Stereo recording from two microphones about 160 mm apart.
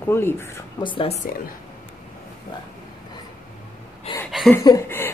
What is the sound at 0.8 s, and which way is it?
Speech, 30° left (ahead or behind).